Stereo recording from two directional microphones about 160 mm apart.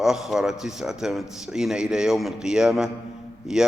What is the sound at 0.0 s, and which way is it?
Speech, centre (ahead or behind).